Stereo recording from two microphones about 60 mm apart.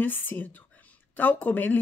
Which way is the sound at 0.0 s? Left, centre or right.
Left.